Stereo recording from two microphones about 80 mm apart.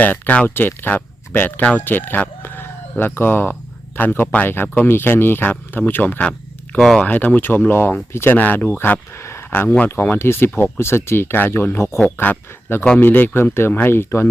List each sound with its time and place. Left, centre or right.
0.0 s speech: left
6.7 s speech: centre
7.0 s speech: centre